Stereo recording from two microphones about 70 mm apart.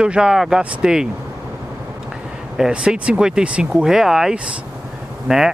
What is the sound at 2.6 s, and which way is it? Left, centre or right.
Speech, centre.